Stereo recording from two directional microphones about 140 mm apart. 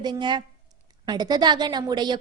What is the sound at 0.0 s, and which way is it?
A woman's voice, 35° right (ahead or behind).